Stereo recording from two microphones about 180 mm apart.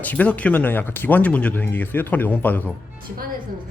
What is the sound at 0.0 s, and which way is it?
Speech, 10° left (ahead or behind).